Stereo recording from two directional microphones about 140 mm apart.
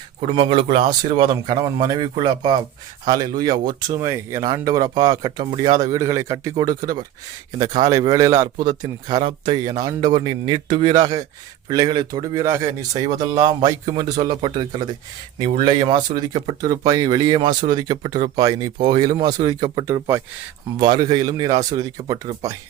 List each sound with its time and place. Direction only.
0.2 s speech: 40° right (ahead or behind)
19.9 s speech: 15° right (ahead or behind)
20.7 s speech: 30° right (ahead or behind)